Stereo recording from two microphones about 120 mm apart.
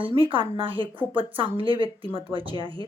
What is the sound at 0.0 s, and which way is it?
Speech, 45° right (ahead or behind).